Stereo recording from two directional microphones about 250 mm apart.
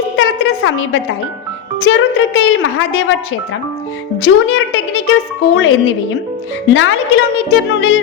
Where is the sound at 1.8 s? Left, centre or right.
Left.